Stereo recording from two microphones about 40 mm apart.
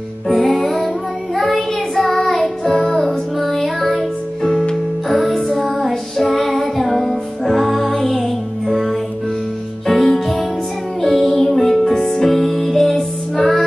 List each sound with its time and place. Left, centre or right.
0.3 s music: centre
1.3 s child singing: centre
4.5 s music: centre
5.2 s music: centre
9.8 s music: centre